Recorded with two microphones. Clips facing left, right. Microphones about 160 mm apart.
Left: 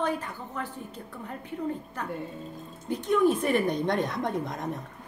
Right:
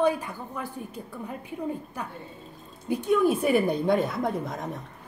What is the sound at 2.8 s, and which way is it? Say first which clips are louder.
A woman's voice: right 1 dB; 10° right (ahead or behind).